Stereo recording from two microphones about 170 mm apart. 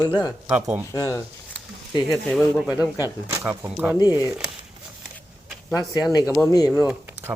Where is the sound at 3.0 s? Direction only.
10° right (ahead or behind).